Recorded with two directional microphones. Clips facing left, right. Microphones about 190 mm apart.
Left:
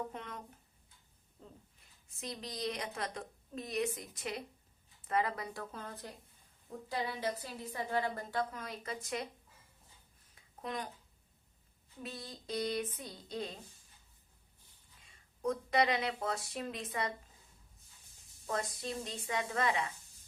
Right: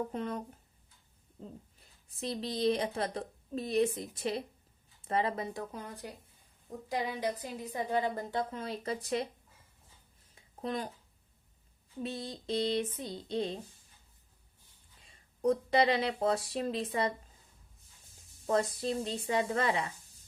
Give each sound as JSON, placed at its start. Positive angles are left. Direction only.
{"t": 0.1, "sound": "a woman's voice", "side_deg": -35}
{"t": 5.7, "sound": "a woman's voice", "side_deg": -15}
{"t": 10.3, "sound": "a sound", "side_deg": -30}
{"t": 12.0, "sound": "a woman's voice", "side_deg": -25}
{"t": 15.0, "sound": "speech", "side_deg": -35}
{"t": 18.4, "sound": "speech", "side_deg": -35}